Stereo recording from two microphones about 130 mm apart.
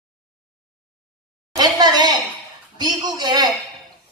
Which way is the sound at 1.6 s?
30° right (ahead or behind).